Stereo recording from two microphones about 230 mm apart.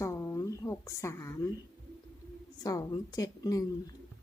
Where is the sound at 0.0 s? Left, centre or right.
Centre.